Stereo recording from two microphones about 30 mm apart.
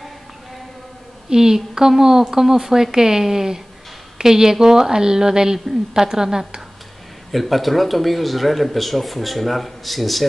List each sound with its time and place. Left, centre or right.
1.3 s a woman's voice: centre
7.3 s speech: centre